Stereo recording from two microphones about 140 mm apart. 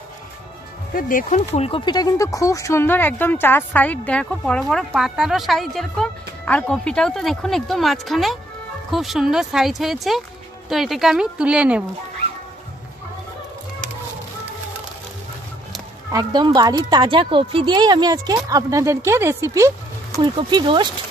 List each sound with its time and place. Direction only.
0.9 s speech: 80° left
1.5 s speech: 45° left (ahead or behind)
1.9 s speech: 25° left (ahead or behind); by 11.8 s 10° right (ahead or behind)
16.1 s speech: 30° right (ahead or behind)
20.2 s speech: 35° right (ahead or behind)